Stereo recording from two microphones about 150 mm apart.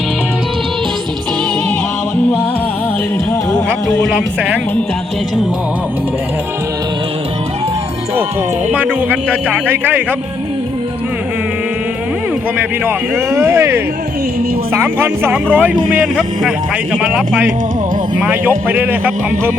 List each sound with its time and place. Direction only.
3.8 s speech: 5° right (ahead or behind)
8.7 s a man's voice: 10° right (ahead or behind)
12.8 s a man's voice: 15° right (ahead or behind)